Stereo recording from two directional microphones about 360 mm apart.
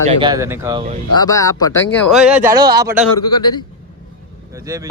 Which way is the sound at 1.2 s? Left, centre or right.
Centre.